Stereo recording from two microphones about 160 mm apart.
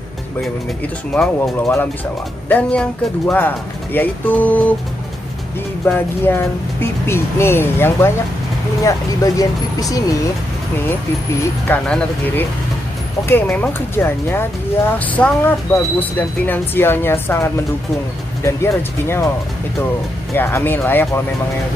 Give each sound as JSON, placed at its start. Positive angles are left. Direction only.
{"t": 1.4, "sound": "speech", "side_deg": 15}
{"t": 5.9, "sound": "speech", "side_deg": 15}
{"t": 11.6, "sound": "speech", "side_deg": 10}
{"t": 20.3, "sound": "speech", "side_deg": 15}